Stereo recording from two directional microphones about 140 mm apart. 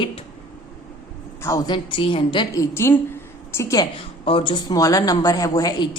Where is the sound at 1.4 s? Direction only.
25° left (ahead or behind).